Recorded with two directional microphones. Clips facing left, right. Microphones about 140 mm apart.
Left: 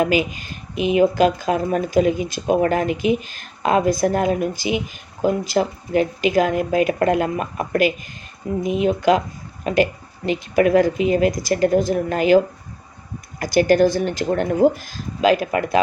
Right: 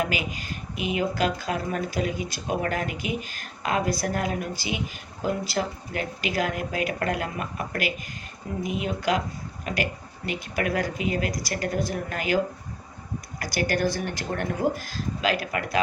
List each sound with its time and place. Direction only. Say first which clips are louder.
0.0 s speech: left 9 dB; 25° left (ahead or behind)
13.4 s speech: left 11 dB; 25° left (ahead or behind)